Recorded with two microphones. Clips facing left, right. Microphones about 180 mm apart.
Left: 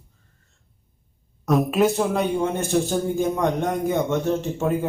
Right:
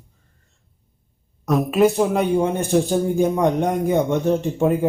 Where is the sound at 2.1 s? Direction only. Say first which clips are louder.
Right 3 dB; 15° right (ahead or behind).